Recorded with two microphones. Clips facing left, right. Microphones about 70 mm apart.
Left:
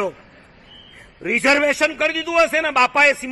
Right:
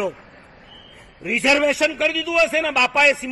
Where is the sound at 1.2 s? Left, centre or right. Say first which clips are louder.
Left 1 dB; left.